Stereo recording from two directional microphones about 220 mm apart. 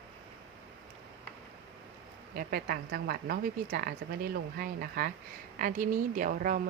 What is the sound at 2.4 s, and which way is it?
A woman's voice, 45° right (ahead or behind).